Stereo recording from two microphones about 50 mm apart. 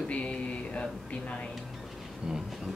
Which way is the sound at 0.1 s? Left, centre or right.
Left.